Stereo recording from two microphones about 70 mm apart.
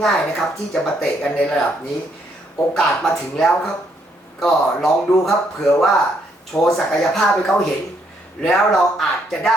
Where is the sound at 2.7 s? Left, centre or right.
Centre.